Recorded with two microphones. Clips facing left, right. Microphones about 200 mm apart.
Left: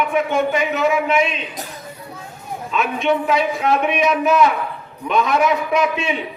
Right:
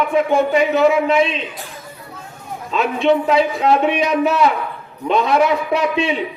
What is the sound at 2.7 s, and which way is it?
A man's voice, 35° right (ahead or behind).